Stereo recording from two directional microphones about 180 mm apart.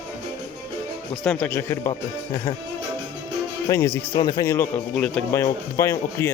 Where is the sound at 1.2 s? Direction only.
10° left (ahead or behind); by 2.6 s 25° left (ahead or behind).